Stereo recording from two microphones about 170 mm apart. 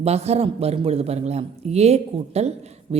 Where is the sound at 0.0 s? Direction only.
40° right (ahead or behind).